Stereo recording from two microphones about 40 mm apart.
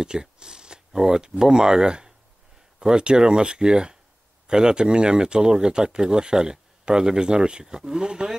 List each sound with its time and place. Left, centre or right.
0.0 s zipper: centre
0.9 s speech: centre